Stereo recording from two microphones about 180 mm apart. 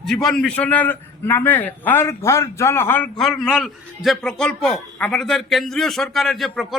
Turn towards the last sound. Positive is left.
turn(degrees=0)  # may be behind; listen again after turning